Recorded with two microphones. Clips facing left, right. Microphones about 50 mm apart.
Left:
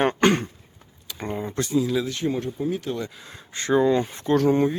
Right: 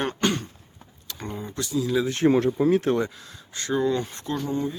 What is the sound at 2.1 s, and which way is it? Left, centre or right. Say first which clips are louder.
Speech: right 6 dB; right.